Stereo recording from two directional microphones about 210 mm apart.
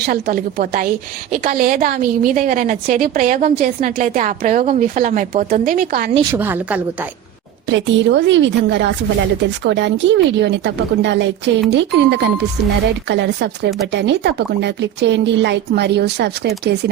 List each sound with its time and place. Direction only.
0.0 s a woman's voice: 45° right (ahead or behind)
6.3 s a woman's voice: 10° right (ahead or behind)
7.7 s speech: 60° right (ahead or behind)